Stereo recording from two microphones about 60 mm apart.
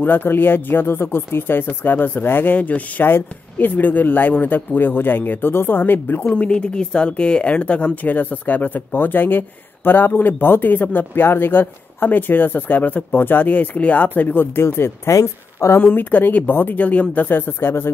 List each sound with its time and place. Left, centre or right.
0.0 s speech: left
6.3 s a woman's voice: centre; by 15.8 s left
15.8 s speech: left